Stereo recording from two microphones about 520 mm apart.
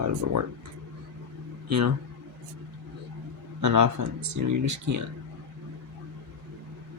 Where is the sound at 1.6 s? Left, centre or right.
Right.